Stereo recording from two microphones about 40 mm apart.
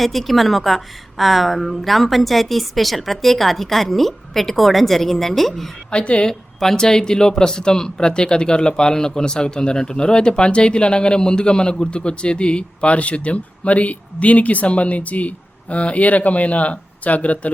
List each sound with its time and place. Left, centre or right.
0.0 s a woman's voice: centre
5.9 s speech: left
6.2 s speech: centre; by 17.5 s left